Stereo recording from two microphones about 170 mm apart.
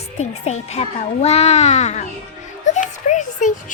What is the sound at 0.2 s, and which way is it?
A child's voice, 40° left (ahead or behind).